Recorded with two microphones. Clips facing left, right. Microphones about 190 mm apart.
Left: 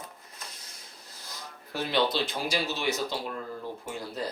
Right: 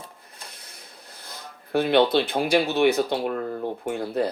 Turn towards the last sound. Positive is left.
turn(degrees=-60)  # may be behind; listen again after turning